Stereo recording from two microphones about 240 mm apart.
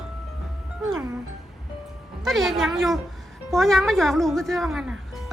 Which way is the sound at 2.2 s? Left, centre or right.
Centre.